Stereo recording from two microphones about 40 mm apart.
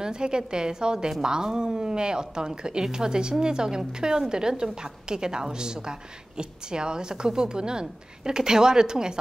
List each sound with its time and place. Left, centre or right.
0.0 s a woman's voice: centre